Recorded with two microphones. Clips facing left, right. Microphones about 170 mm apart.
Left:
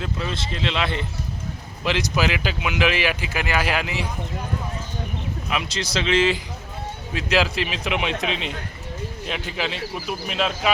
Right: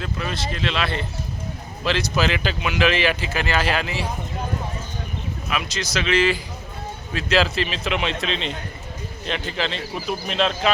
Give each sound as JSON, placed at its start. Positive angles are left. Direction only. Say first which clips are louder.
{"t": 0.0, "sound": "speech", "louder": "even", "side_deg": 20}
{"t": 5.5, "sound": "speech", "louder": "even", "side_deg": 25}